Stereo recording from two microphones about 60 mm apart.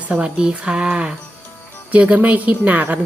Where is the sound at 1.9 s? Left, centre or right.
Right.